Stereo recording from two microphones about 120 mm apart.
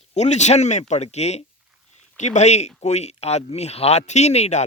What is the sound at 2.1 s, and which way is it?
Speech, 80° left.